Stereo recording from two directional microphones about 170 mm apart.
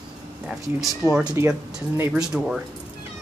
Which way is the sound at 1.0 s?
20° left (ahead or behind).